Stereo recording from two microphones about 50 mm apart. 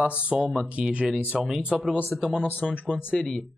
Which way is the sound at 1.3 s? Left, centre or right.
Centre.